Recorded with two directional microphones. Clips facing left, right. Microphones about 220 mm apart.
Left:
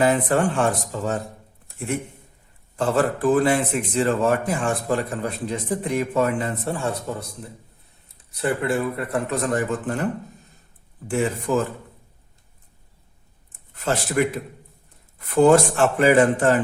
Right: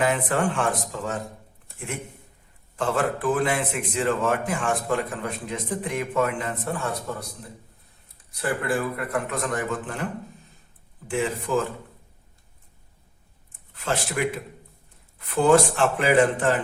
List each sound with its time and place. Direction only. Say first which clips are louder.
0.0 s speech: left 4 dB; 35° left (ahead or behind)
2.7 s speech: left 4 dB; 40° left (ahead or behind)
8.4 s speech: left 3 dB; 25° left (ahead or behind)
11.1 s a man's voice: left 3 dB; 40° left (ahead or behind)
14.2 s a man's voice: left 6 dB; 45° left (ahead or behind)
15.4 s a man's voice: left 3 dB; 45° left (ahead or behind)